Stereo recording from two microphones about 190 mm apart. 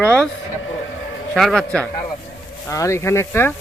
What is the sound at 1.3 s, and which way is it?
Speech, centre (ahead or behind).